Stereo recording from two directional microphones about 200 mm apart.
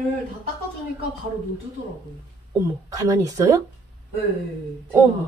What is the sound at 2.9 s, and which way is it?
Speech, 15° right (ahead or behind).